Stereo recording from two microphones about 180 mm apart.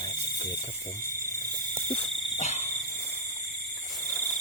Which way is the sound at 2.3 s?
40° left (ahead or behind).